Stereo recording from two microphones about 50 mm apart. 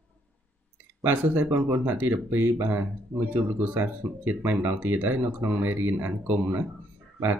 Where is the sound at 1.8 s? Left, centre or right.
Right.